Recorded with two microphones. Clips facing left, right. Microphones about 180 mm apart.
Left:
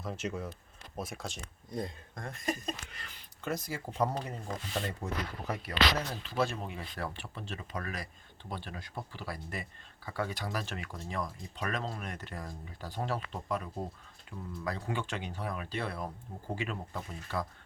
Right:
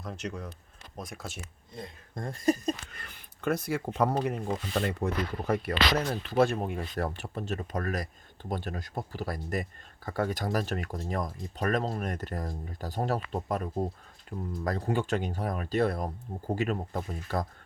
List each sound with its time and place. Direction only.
0.0 s speech: centre (ahead or behind)
2.1 s speech: 35° right (ahead or behind)
3.0 s speech: 55° right (ahead or behind)